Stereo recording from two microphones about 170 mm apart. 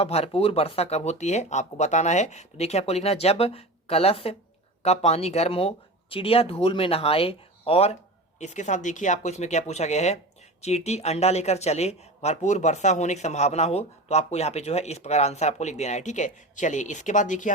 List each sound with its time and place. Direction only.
0.0 s speech: 35° left (ahead or behind)